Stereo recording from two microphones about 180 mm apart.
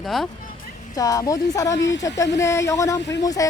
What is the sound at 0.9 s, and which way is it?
A woman's voice, 20° left (ahead or behind).